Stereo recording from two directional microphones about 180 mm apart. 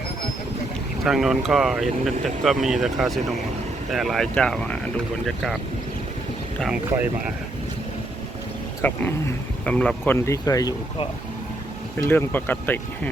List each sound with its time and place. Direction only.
1.0 s speech: centre (ahead or behind)
6.6 s speech: 5° right (ahead or behind)
8.8 s speech: 10° left (ahead or behind)
11.9 s speech: 10° left (ahead or behind)